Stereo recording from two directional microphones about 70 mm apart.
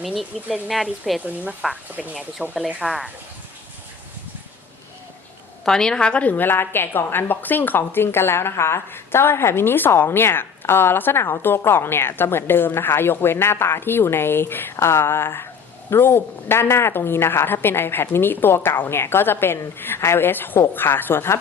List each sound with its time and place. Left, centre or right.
0.0 s speech: centre
5.6 s a woman's voice: centre; by 21.3 s left